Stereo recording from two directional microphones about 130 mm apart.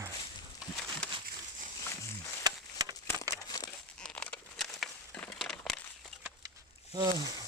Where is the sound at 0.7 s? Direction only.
5° left (ahead or behind).